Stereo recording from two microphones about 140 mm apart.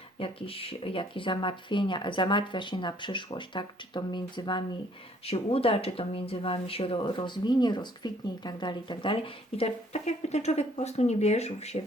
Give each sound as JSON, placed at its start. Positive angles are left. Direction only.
{"t": 0.2, "sound": "speech", "side_deg": 40}
{"t": 5.2, "sound": "speech", "side_deg": 45}